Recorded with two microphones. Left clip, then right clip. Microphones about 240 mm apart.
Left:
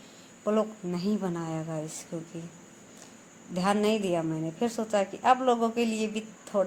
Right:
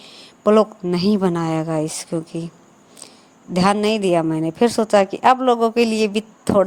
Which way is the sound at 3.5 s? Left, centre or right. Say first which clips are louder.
Right 9 dB; right.